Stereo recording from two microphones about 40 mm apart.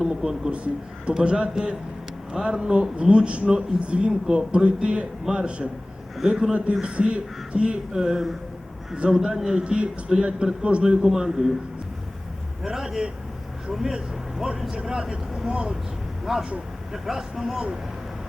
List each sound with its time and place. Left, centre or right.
0.1 s speech: centre
0.5 s a man's voice: right; by 11.5 s centre
12.6 s a man's voice: centre
16.3 s speech: centre